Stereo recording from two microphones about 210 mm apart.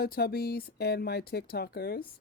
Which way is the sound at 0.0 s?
50° left (ahead or behind).